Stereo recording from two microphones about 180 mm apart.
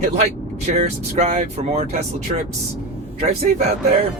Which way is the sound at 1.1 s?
40° right (ahead or behind).